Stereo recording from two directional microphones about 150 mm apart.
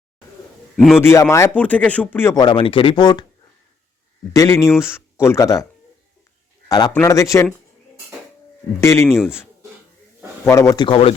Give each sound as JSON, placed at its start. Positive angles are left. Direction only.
{"t": 0.9, "sound": "speech", "side_deg": 20}
{"t": 2.4, "sound": "speech", "side_deg": 35}
{"t": 4.3, "sound": "speech", "side_deg": 15}
{"t": 6.7, "sound": "a man's voice", "side_deg": 30}
{"t": 8.8, "sound": "speech", "side_deg": 20}
{"t": 10.8, "sound": "speech", "side_deg": 40}